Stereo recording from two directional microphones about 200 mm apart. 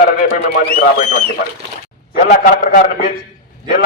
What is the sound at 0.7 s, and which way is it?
A man's voice, 45° left (ahead or behind).